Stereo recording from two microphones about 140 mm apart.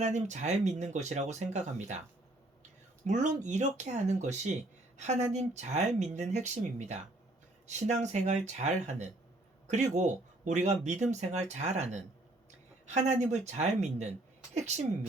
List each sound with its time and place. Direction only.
0.0 s speech: 55° right (ahead or behind)
3.0 s speech: 60° right (ahead or behind)